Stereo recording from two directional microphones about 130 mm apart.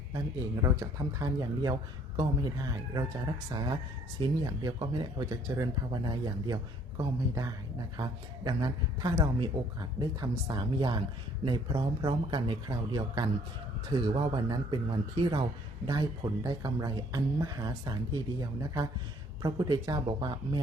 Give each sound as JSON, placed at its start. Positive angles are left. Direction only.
{"t": 0.6, "sound": "speech", "side_deg": -25}
{"t": 3.5, "sound": "speech", "side_deg": -30}